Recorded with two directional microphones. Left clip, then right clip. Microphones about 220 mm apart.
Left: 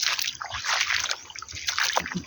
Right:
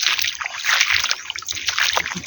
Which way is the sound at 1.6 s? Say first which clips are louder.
Right 6 dB; 15° left (ahead or behind).